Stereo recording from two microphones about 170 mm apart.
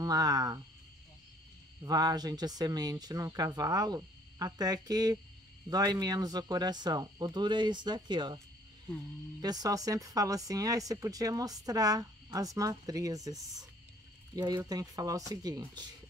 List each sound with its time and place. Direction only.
0.0 s speech: 20° right (ahead or behind)
1.9 s speech: 25° right (ahead or behind)
9.4 s speech: 20° right (ahead or behind)